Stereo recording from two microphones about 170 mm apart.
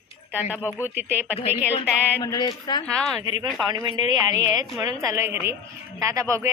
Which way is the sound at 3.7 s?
25° right (ahead or behind).